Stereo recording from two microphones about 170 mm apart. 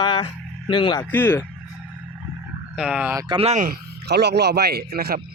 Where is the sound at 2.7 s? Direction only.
5° right (ahead or behind).